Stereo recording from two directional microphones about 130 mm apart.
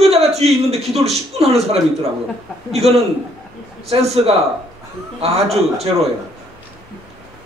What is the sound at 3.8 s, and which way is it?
A man's voice, 55° right (ahead or behind).